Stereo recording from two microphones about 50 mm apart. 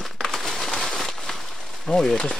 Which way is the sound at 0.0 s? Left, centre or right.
Centre.